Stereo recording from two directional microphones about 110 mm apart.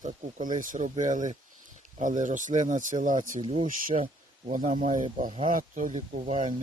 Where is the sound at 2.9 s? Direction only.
60° right (ahead or behind).